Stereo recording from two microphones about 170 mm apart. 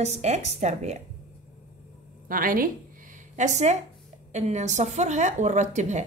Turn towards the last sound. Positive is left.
turn(degrees=-45)  # may be behind; listen again after turning